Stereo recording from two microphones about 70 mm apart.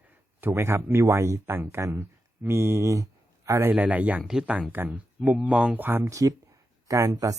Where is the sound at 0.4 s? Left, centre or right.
Right.